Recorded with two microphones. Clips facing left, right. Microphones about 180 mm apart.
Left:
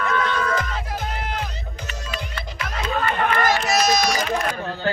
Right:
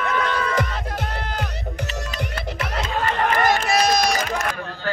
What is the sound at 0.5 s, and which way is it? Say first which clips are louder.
Music: right 2 dB; 70° right (ahead or behind).